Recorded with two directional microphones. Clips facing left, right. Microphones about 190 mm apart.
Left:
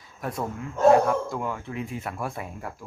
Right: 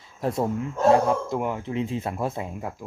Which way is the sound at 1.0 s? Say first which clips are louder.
Right 2 dB; 20° right (ahead or behind).